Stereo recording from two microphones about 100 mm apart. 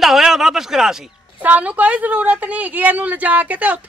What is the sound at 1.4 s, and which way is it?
A woman's voice, 15° right (ahead or behind).